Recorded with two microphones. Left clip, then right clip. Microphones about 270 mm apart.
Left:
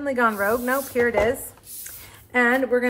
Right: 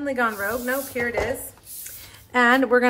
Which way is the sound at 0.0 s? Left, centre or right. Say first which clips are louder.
Left 3 dB; centre.